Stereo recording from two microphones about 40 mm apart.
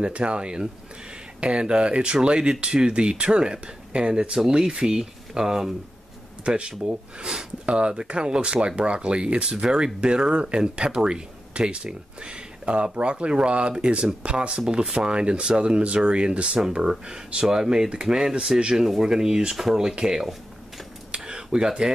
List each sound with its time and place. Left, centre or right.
0.0 s speech: right
6.4 s speech: right
19.5 s speech: centre
21.1 s a sound: right